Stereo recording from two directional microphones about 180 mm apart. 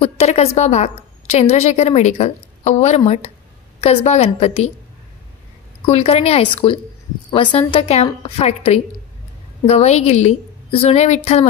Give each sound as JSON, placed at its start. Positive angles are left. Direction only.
{"t": 0.0, "sound": "a woman's voice", "side_deg": 35}
{"t": 5.9, "sound": "a woman's voice", "side_deg": 35}